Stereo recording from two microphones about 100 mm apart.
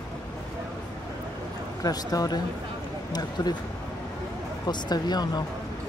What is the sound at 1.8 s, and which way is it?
Speech, 40° left (ahead or behind).